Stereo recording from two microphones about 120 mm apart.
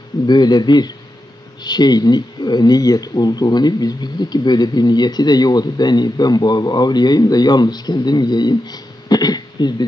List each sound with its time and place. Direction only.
0.3 s speech: 35° left (ahead or behind)